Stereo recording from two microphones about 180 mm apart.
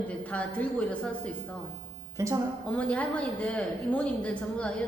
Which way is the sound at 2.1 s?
15° right (ahead or behind).